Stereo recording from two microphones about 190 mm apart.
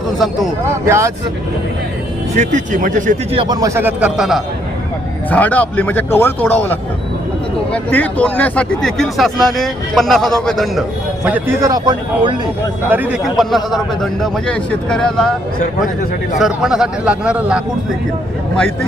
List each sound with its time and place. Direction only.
0.7 s a man's voice: 15° right (ahead or behind)
2.3 s speech: 40° right (ahead or behind)
3.3 s a man's voice: 20° right (ahead or behind)
12.9 s speech: 5° right (ahead or behind)
16.4 s speech: 5° right (ahead or behind)